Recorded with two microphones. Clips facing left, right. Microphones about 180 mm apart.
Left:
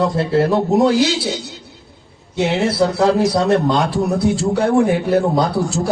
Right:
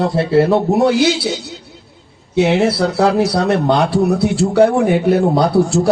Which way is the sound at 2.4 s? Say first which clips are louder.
Right 3 dB; 65° right (ahead or behind).